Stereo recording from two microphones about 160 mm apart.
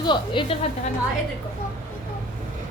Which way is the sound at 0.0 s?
30° left (ahead or behind).